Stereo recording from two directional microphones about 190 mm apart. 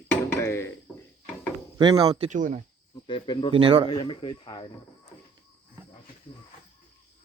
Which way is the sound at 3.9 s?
25° left (ahead or behind).